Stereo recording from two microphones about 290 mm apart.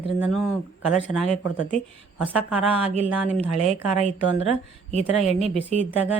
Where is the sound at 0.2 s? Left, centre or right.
Centre.